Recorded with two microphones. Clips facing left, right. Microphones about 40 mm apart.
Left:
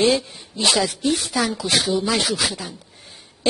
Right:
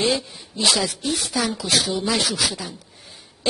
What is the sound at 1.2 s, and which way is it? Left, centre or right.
A man's voice, centre.